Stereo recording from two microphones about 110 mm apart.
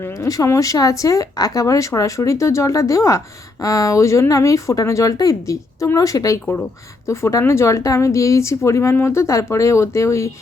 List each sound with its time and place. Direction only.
0.0 s speech: 30° left (ahead or behind)